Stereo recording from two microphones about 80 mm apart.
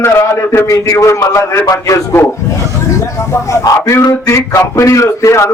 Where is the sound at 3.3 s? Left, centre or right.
Left.